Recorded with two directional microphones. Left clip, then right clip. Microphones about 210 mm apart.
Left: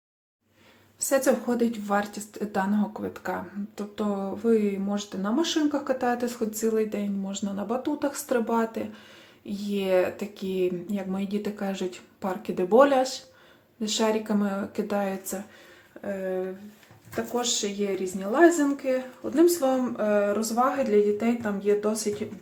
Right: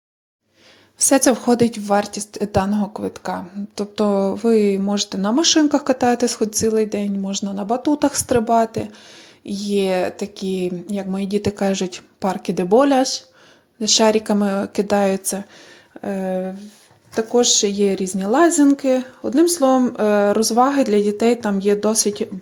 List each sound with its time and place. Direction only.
0.9 s a woman's voice: 40° right (ahead or behind)